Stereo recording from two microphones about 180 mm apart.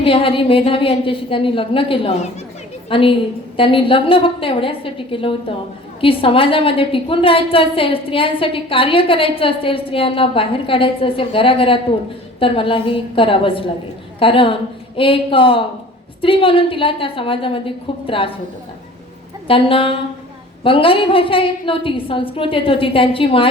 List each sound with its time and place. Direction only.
0.0 s a woman's voice: 30° left (ahead or behind)
19.5 s a woman's voice: 30° left (ahead or behind)